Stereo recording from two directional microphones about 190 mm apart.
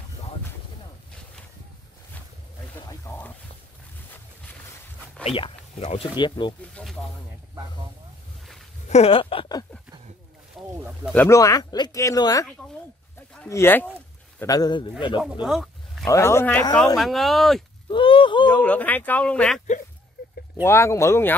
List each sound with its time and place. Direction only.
2.9 s a sound: 10° left (ahead or behind)
5.2 s a man's voice: 30° left (ahead or behind)
6.7 s speech: centre (ahead or behind)
8.8 s a sound: 35° left (ahead or behind)
10.5 s a sound: 5° right (ahead or behind)
11.1 s speech: 15° left (ahead or behind)
13.5 s a man's voice: 10° left (ahead or behind)
15.4 s roaring cats: centre (ahead or behind)
16.1 s speech: 15° left (ahead or behind)
17.8 s a sound: 25° left (ahead or behind)
18.5 s speech: 5° left (ahead or behind)
20.6 s speech: 15° left (ahead or behind)